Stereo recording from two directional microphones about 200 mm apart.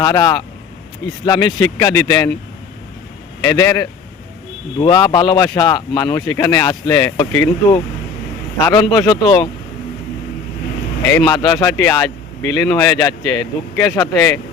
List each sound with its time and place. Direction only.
0.0 s a man's voice: 15° left (ahead or behind)
3.4 s a man's voice: 15° left (ahead or behind)
11.0 s speech: 10° left (ahead or behind)